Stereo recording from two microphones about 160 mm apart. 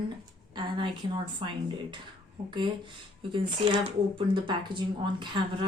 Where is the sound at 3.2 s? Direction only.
35° right (ahead or behind).